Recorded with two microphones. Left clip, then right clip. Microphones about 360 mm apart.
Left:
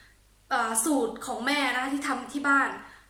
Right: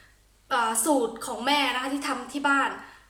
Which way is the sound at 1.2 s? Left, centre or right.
Centre.